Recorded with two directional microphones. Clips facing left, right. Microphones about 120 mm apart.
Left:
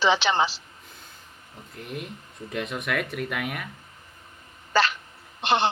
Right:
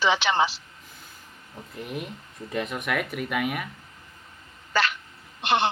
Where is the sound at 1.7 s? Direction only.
Centre (ahead or behind).